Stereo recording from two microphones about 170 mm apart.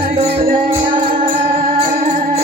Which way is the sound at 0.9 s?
30° right (ahead or behind).